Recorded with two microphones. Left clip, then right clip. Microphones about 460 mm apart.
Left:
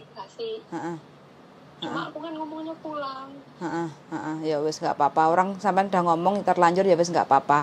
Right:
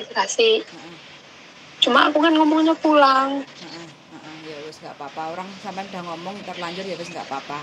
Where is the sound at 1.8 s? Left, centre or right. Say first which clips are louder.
Right 17 dB; right.